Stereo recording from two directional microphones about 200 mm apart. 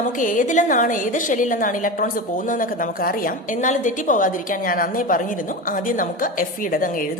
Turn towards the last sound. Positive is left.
turn(degrees=45)  # may be behind; listen again after turning